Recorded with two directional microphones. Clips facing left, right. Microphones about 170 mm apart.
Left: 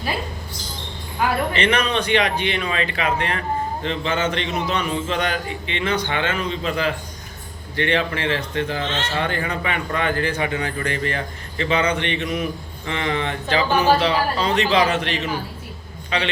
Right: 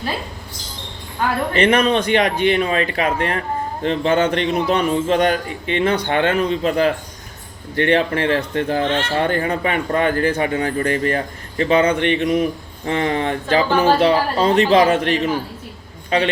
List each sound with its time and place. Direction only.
1.2 s speech: 10° left (ahead or behind)
1.5 s a man's voice: 50° right (ahead or behind)